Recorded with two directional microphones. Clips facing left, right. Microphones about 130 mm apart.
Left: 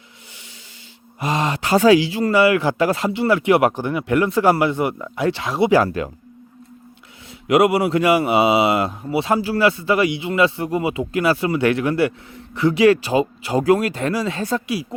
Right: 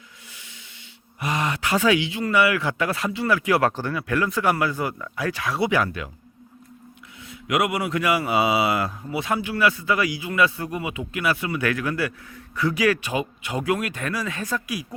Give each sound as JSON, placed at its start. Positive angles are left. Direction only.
{"t": 1.2, "sound": "speech", "side_deg": 30}
{"t": 5.7, "sound": "speech", "side_deg": 35}
{"t": 7.3, "sound": "speech", "side_deg": 30}